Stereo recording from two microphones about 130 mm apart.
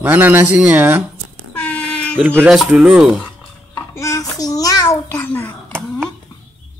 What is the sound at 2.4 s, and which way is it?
Speech, centre (ahead or behind).